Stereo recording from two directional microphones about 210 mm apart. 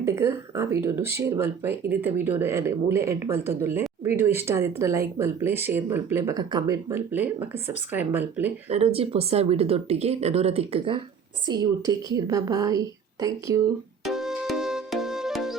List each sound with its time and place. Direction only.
0.0 s speech: 10° right (ahead or behind)
8.7 s speech: 30° right (ahead or behind)
14.0 s music: centre (ahead or behind)